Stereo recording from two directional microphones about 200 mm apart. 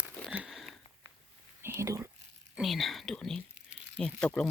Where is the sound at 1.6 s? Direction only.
15° right (ahead or behind).